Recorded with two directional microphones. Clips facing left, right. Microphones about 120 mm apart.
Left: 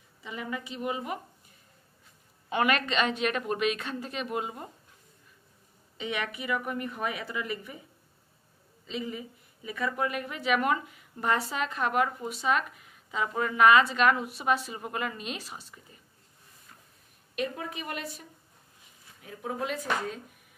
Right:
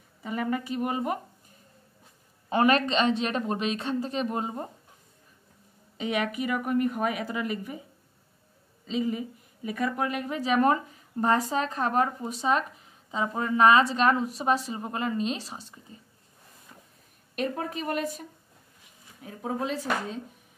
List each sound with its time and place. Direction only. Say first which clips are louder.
0.2 s a woman's voice: right 7 dB; 45° right (ahead or behind)
2.5 s a woman's voice: right 4 dB; 35° right (ahead or behind)
5.9 s a woman's voice: right 5 dB; 45° right (ahead or behind)
8.8 s a woman's voice: right 7 dB; 40° right (ahead or behind)
17.4 s a woman's voice: right 3 dB; 45° right (ahead or behind)
19.2 s a woman's voice: right 3 dB; 30° right (ahead or behind)